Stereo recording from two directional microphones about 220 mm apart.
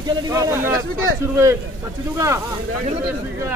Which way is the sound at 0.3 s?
15° right (ahead or behind).